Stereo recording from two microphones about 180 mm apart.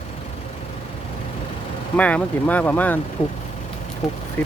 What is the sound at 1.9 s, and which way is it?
Speech, 10° left (ahead or behind).